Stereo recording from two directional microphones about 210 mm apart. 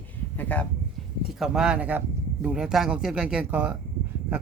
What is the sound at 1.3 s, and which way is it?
Speech, centre (ahead or behind).